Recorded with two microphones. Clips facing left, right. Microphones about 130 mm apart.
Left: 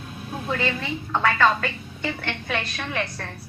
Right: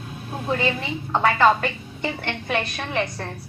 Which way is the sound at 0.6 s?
15° right (ahead or behind).